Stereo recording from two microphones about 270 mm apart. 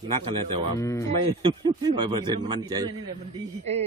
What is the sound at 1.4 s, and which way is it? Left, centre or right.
A man's voice, centre.